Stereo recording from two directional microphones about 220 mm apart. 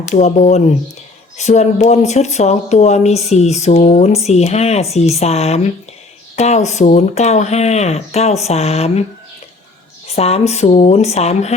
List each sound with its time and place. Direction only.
0.1 s speech: 35° left (ahead or behind)
10.2 s speech: 30° left (ahead or behind)